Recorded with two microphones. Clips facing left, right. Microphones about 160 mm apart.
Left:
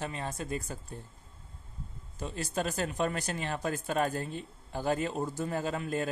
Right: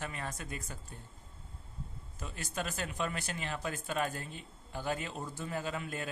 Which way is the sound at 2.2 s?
30° left (ahead or behind).